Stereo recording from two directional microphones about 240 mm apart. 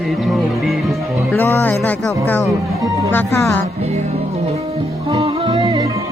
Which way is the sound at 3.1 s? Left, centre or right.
Centre.